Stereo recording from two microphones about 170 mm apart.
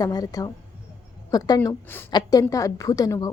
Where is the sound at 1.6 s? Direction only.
10° left (ahead or behind).